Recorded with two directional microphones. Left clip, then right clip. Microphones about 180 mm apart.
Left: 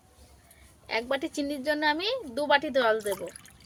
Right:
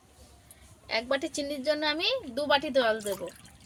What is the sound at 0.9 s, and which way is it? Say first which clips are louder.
A woman's voice: even; 25° left (ahead or behind).